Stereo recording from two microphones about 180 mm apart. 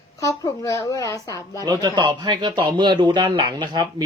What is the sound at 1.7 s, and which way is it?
Speech, 25° right (ahead or behind).